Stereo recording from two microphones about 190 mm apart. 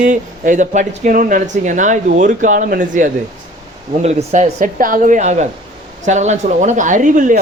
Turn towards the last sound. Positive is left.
turn(degrees=-40)  # may be behind; listen again after turning